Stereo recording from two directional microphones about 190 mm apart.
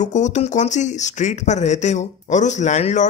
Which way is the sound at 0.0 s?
40° left (ahead or behind).